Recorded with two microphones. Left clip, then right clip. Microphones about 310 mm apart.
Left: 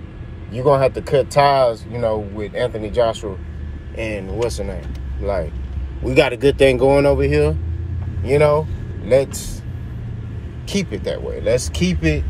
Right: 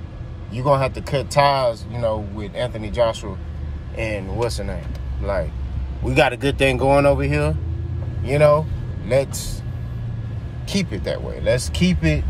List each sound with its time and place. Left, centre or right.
0.5 s speech: centre
10.7 s speech: centre